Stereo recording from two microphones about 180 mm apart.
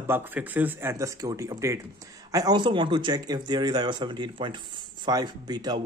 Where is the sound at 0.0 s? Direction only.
10° right (ahead or behind).